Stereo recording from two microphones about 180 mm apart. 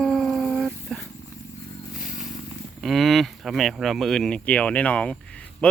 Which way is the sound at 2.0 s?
Centre (ahead or behind).